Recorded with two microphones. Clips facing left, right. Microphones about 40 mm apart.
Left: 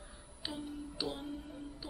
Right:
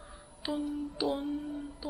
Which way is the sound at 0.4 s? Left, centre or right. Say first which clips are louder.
Right 9 dB; centre.